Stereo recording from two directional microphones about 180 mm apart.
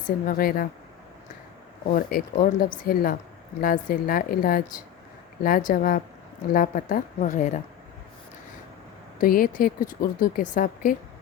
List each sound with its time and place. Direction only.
0.3 s speech: 55° left (ahead or behind)
1.9 s speech: 55° left (ahead or behind)
9.2 s speech: 50° left (ahead or behind)